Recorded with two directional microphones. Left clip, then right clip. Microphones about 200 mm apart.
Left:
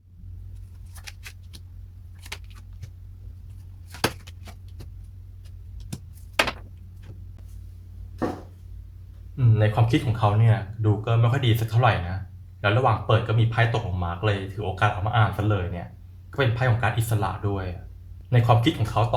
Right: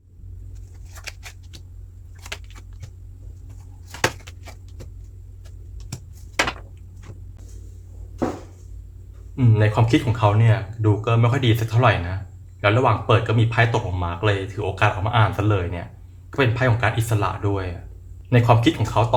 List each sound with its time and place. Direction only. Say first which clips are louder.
9.3 s speech: right 4 dB; 25° right (ahead or behind)